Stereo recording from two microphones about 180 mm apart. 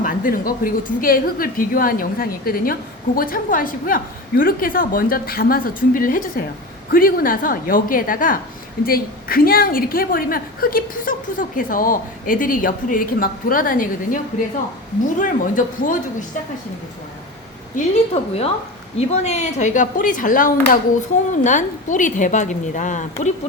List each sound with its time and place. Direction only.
0.0 s a woman's voice: 50° left (ahead or behind)
15.2 s a woman's voice: 45° left (ahead or behind)
17.7 s a woman's voice: 35° left (ahead or behind)